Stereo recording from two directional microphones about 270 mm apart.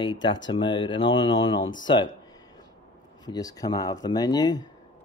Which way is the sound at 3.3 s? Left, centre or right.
Centre.